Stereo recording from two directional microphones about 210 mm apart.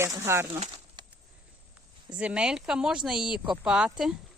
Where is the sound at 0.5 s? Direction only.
25° right (ahead or behind).